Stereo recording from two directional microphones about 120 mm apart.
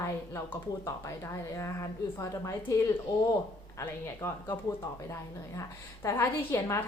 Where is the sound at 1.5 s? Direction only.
25° left (ahead or behind).